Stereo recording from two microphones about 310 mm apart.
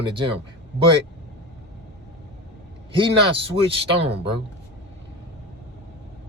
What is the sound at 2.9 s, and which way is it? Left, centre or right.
A man's voice, centre.